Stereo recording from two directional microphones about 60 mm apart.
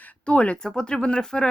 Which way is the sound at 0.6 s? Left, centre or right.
Centre.